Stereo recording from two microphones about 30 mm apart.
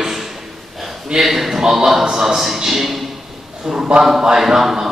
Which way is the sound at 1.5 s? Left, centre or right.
Centre.